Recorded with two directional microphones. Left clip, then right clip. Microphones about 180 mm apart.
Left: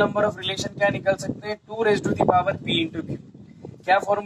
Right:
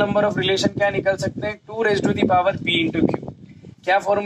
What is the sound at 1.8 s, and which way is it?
Speech, 25° right (ahead or behind).